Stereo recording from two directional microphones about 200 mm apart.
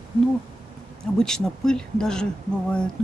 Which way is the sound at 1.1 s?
5° left (ahead or behind).